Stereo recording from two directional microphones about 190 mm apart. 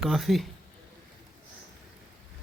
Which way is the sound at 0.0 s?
Centre (ahead or behind).